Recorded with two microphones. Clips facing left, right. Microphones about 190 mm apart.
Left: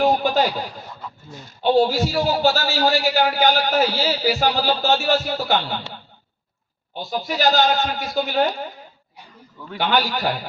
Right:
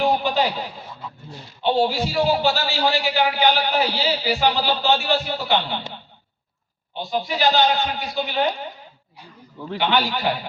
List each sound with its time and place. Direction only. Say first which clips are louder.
0.0 s a sound: left 2 dB; 45° left (ahead or behind)
1.3 s a man's voice: left 4 dB; 45° left (ahead or behind)
6.9 s a man's voice: even; 45° left (ahead or behind)
9.7 s a man's voice: even; 45° left (ahead or behind)